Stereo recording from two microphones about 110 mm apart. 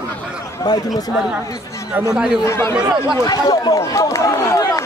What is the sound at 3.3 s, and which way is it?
Speech, 35° left (ahead or behind).